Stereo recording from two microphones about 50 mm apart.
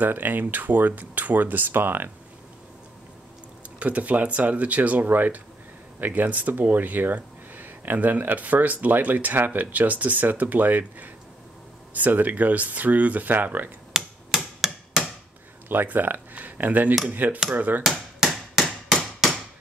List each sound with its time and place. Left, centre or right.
0.0 s speech: right
3.8 s speech: right
13.9 s a sound: centre
15.7 s speech: right
18.2 s hammer: centre